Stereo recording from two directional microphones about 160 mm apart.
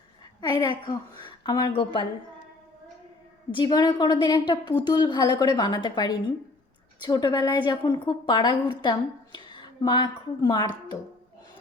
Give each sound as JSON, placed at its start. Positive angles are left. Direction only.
{"t": 0.4, "sound": "a woman's voice", "side_deg": 25}
{"t": 3.5, "sound": "a woman's voice", "side_deg": 25}